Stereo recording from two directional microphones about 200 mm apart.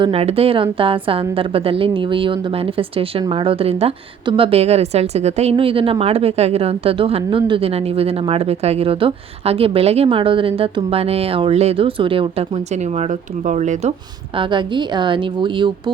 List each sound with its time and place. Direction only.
0.0 s speech: 30° right (ahead or behind)
14.3 s speech: 25° right (ahead or behind)